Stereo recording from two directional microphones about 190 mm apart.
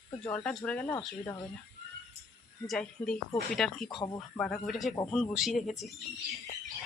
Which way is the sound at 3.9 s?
20° left (ahead or behind).